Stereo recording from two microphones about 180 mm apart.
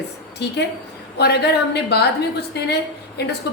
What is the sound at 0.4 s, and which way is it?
A woman's voice, 70° left (ahead or behind).